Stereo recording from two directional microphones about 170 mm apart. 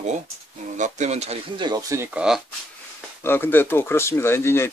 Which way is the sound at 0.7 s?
45° right (ahead or behind).